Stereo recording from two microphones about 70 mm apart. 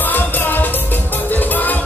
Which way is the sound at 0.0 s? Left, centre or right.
Left.